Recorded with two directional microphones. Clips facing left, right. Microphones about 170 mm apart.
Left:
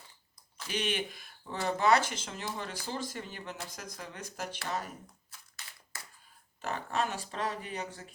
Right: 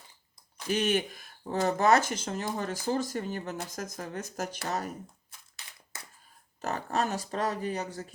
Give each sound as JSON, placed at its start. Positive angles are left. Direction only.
{"t": 0.7, "sound": "speech", "side_deg": -45}
{"t": 6.6, "sound": "speech", "side_deg": -40}